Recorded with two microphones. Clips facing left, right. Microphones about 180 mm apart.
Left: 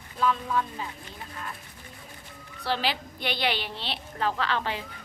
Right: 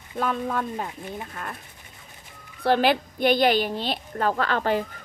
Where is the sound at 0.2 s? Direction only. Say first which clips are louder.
Right 1 dB; 55° right (ahead or behind).